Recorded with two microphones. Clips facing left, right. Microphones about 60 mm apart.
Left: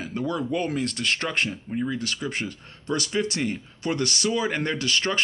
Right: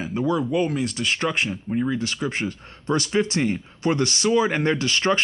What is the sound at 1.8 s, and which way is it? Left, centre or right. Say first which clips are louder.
Speech: right 3 dB; right.